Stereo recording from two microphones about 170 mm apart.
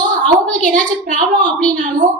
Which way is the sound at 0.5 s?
50° right (ahead or behind).